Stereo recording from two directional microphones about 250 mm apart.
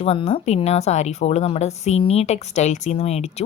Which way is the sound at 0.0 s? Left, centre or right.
Left.